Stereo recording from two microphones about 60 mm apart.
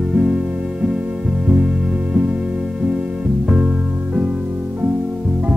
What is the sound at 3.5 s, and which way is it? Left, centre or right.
Music, right.